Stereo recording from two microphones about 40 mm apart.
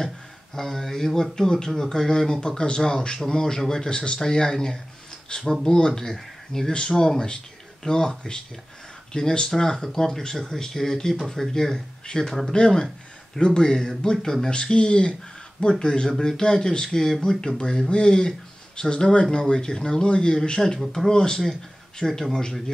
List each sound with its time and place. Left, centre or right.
0.6 s speech: centre
5.8 s speech: left
10.3 s speech: centre
10.6 s speech: centre
12.5 s speech: left
20.8 s speech: centre
21.1 s speech: centre